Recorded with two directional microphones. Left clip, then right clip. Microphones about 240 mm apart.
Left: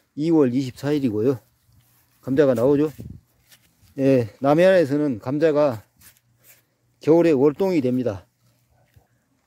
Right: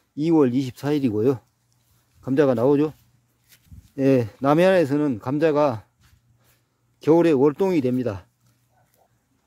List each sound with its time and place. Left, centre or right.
0.1 s speech: centre
7.0 s speech: centre